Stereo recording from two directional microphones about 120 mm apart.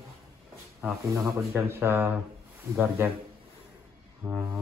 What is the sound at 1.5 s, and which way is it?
Speech, 20° right (ahead or behind).